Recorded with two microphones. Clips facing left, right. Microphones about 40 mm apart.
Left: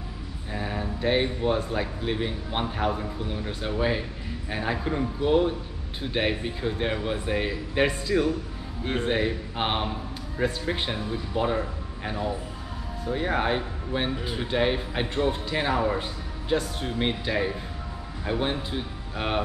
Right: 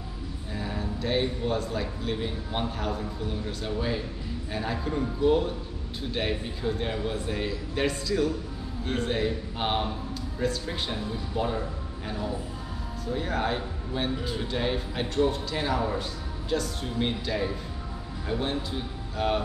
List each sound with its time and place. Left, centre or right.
0.5 s speech: left
13.0 s speech: left